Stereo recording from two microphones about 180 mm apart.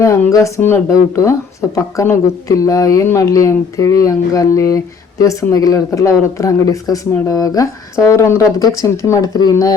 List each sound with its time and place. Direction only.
0.0 s speech: 15° left (ahead or behind)